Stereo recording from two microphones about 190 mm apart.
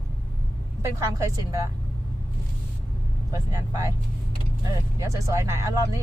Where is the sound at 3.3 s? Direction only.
15° right (ahead or behind).